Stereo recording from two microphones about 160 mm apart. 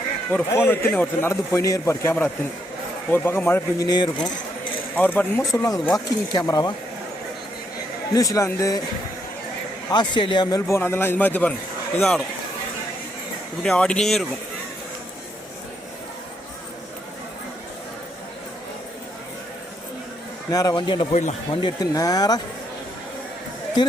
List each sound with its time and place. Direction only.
0.3 s a man's voice: 10° left (ahead or behind)
3.8 s speech: 25° left (ahead or behind)
4.9 s a man's voice: 10° left (ahead or behind)
5.5 s speech: 20° left (ahead or behind)
8.1 s speech: 20° left (ahead or behind)
9.9 s a man's voice: 30° left (ahead or behind); by 12.2 s centre (ahead or behind)
13.6 s speech: 5° left (ahead or behind)
20.5 s speech: 20° left (ahead or behind)